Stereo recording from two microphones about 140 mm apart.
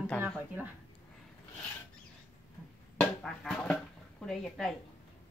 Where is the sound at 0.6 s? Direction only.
15° right (ahead or behind).